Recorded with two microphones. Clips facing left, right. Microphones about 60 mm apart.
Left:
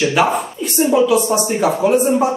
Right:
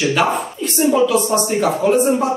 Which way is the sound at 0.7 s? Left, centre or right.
Centre.